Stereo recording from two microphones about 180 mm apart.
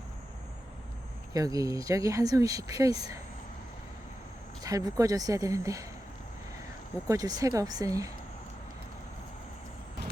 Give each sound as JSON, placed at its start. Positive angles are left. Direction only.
{"t": 1.3, "sound": "speech", "side_deg": -20}
{"t": 4.6, "sound": "speech", "side_deg": -20}
{"t": 7.1, "sound": "speech", "side_deg": -20}